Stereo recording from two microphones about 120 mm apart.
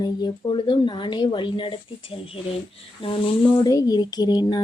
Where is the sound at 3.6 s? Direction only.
30° left (ahead or behind).